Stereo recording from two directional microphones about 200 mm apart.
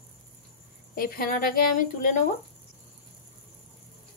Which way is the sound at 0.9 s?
45° left (ahead or behind).